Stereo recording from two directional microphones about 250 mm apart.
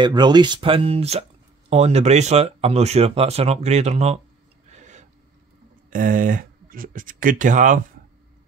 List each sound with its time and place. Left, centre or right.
0.0 s speech: centre
4.6 s filing: right
5.9 s speech: right